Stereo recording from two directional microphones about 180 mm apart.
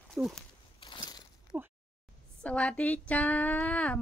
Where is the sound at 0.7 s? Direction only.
25° left (ahead or behind).